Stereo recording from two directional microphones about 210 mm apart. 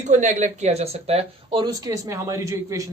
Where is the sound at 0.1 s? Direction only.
35° right (ahead or behind).